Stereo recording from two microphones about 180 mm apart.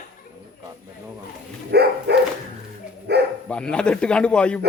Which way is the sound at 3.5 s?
5° left (ahead or behind).